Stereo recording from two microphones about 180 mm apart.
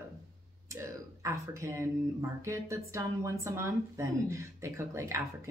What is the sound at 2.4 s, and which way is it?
Speech, 15° right (ahead or behind).